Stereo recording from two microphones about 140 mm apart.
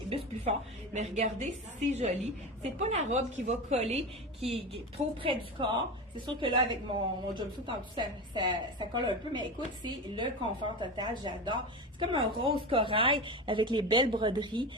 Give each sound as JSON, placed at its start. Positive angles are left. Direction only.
{"t": 0.9, "sound": "a woman's voice", "side_deg": -50}